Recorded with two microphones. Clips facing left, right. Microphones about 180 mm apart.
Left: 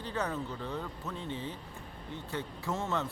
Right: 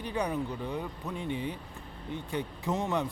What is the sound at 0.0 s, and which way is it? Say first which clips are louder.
A man's voice: right 3 dB; 15° right (ahead or behind).